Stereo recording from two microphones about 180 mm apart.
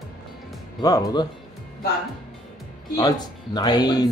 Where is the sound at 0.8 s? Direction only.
20° left (ahead or behind).